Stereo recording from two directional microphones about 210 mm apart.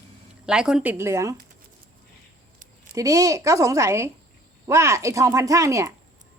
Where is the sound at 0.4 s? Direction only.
5° right (ahead or behind).